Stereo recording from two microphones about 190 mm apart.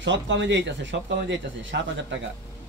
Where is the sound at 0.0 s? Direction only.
70° right (ahead or behind).